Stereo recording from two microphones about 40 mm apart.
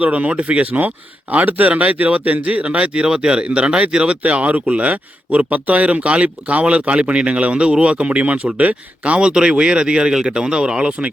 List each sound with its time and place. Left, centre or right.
0.0 s speech: right
9.1 s speech: right